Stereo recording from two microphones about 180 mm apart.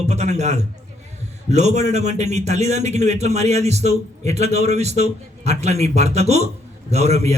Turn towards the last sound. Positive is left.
turn(degrees=-35)  # may be behind; listen again after turning